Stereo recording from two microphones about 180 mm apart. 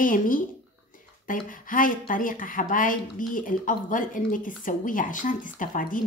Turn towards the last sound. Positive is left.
turn(degrees=50)  # may be behind; listen again after turning